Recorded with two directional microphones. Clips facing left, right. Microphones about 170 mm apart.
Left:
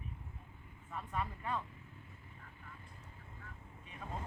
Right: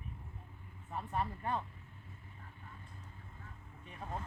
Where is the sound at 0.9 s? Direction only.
35° right (ahead or behind).